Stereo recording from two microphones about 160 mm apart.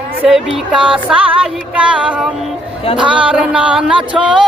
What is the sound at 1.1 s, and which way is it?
Music, 10° right (ahead or behind).